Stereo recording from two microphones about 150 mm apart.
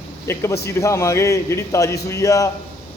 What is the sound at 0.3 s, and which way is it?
A man's voice, 20° left (ahead or behind).